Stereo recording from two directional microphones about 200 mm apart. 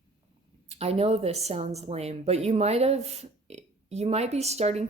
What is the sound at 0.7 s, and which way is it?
Speech, 30° right (ahead or behind).